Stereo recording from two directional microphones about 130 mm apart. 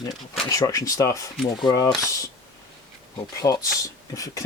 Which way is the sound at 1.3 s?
Centre (ahead or behind).